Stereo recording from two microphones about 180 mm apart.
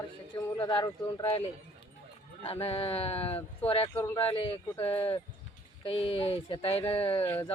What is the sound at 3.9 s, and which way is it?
Speech, 15° left (ahead or behind).